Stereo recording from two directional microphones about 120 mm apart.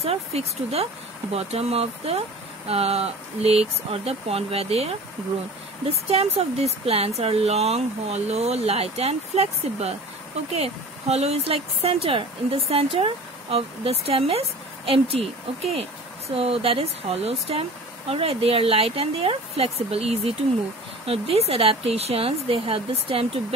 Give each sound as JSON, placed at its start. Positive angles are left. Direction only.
{"t": 0.0, "sound": "speech", "side_deg": -55}